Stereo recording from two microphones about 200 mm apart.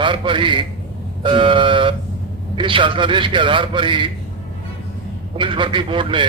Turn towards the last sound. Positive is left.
turn(degrees=-25)  # may be behind; listen again after turning